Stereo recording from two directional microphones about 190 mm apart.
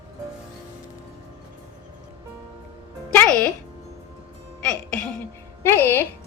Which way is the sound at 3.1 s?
5° left (ahead or behind).